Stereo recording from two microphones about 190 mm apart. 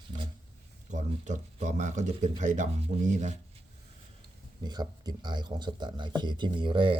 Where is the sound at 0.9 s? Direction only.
40° right (ahead or behind).